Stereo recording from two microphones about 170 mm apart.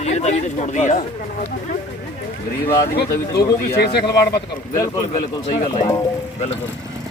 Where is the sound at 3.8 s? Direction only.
70° left (ahead or behind).